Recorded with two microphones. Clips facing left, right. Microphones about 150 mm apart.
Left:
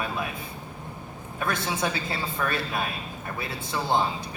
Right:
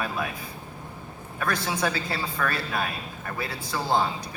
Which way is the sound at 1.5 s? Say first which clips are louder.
Right 1 dB; 25° left (ahead or behind).